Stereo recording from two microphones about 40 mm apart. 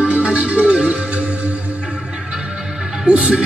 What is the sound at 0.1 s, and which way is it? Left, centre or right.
Music, right.